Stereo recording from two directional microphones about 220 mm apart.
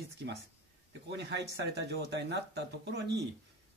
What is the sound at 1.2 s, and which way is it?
Speech, 50° right (ahead or behind).